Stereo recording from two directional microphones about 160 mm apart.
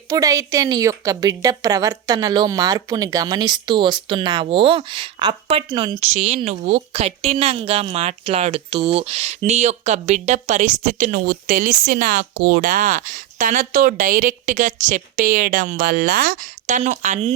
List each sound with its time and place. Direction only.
0.1 s a woman's voice: 20° right (ahead or behind); by 17.3 s 45° right (ahead or behind)